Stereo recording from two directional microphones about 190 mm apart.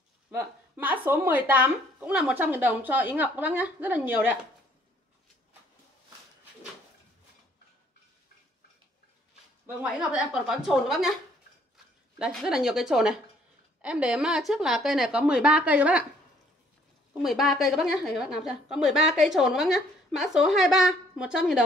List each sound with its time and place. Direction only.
0.4 s a woman's voice: 10° right (ahead or behind)
9.8 s a woman's voice: 5° right (ahead or behind)
17.2 s a woman's voice: centre (ahead or behind)